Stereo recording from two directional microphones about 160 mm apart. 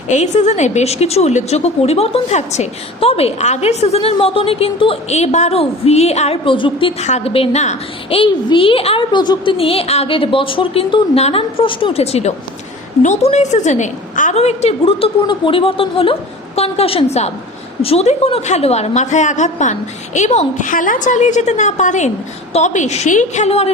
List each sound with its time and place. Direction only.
0.1 s a woman's voice: 45° left (ahead or behind)
8.2 s a woman's voice: 35° left (ahead or behind)